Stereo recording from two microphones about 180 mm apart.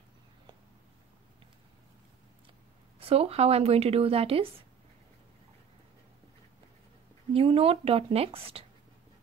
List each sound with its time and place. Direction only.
3.0 s speech: 35° right (ahead or behind)
7.3 s speech: 30° right (ahead or behind)